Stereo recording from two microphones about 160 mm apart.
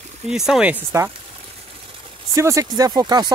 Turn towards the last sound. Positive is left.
turn(degrees=-25)  # may be behind; listen again after turning